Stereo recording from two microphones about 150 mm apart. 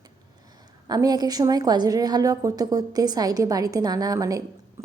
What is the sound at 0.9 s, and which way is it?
A woman's voice, 25° right (ahead or behind).